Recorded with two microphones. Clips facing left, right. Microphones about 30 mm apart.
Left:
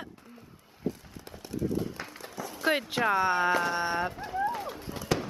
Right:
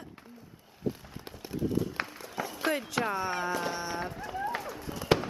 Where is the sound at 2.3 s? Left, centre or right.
Right.